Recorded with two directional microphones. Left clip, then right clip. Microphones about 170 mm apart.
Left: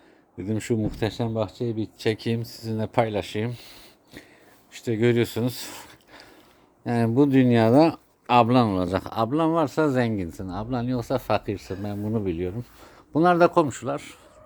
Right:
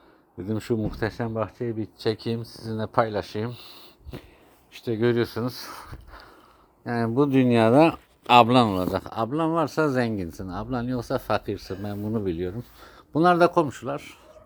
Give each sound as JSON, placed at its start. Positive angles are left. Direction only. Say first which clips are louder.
{"t": 0.3, "sound": "speech", "louder": "left 1 dB", "side_deg": 5}
{"t": 1.4, "sound": "speech", "louder": "left 1 dB", "side_deg": -25}
{"t": 2.0, "sound": "speech", "louder": "left 1 dB", "side_deg": 10}